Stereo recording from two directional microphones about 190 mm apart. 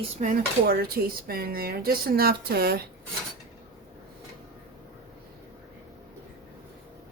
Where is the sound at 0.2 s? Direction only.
45° right (ahead or behind).